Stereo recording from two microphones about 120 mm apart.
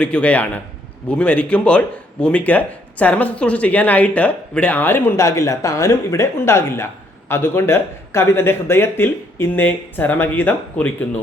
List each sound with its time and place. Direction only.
0.0 s speech: 10° left (ahead or behind)